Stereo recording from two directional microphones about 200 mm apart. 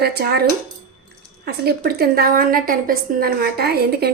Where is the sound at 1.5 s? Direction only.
50° right (ahead or behind).